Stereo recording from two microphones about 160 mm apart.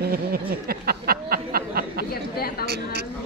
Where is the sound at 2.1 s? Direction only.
75° left (ahead or behind).